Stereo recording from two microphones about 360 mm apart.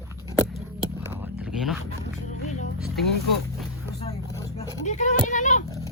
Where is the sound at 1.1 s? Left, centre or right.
Centre.